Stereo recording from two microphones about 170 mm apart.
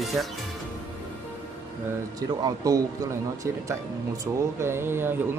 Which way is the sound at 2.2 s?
20° right (ahead or behind).